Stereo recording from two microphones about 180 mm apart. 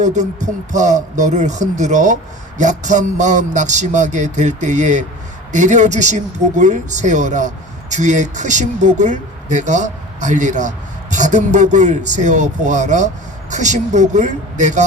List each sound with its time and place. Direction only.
0.0 s a man's voice: 40° right (ahead or behind)